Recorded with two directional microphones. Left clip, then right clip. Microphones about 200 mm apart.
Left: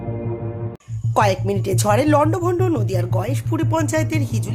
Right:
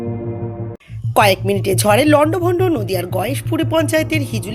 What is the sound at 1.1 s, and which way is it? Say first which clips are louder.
Speech: right 5 dB; 5° right (ahead or behind).